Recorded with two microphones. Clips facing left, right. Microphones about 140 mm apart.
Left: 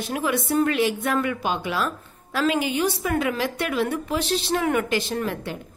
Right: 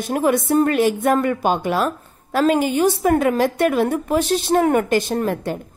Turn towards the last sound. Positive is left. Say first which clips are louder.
# right 6 dB
turn(degrees=-45)  # may be behind; listen again after turning